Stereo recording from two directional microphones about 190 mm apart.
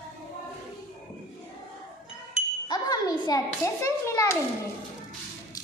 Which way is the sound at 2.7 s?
20° left (ahead or behind).